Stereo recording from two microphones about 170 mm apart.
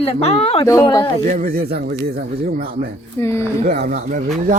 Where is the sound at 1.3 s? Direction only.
40° right (ahead or behind).